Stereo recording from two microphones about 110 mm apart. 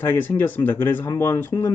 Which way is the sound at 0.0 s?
15° left (ahead or behind).